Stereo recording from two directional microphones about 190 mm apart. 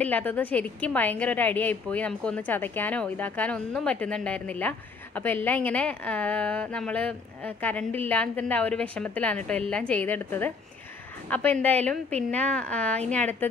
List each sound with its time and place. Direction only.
0.0 s a woman's voice: 10° left (ahead or behind)